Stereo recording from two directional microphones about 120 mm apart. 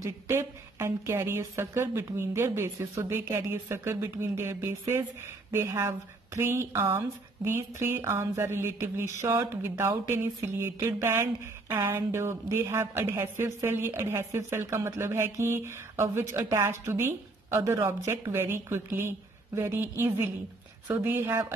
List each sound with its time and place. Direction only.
0.0 s a woman's voice: 20° right (ahead or behind)